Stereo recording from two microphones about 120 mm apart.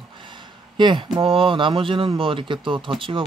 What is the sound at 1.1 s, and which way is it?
Speech, 45° right (ahead or behind).